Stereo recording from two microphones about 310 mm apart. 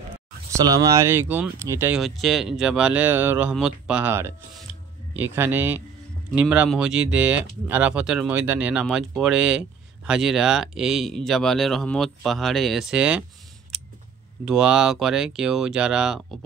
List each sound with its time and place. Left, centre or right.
0.7 s a man's voice: centre
13.7 s a sound: centre
14.4 s speech: centre